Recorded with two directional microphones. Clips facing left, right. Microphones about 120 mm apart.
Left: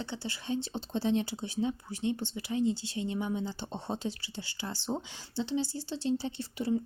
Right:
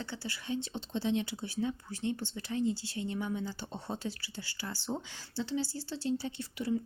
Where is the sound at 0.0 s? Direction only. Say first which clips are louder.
Left 2 dB; 20° left (ahead or behind).